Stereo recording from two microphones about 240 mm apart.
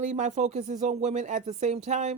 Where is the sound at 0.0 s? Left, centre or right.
Right.